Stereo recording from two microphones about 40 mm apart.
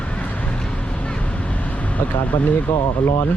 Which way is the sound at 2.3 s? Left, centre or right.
Left.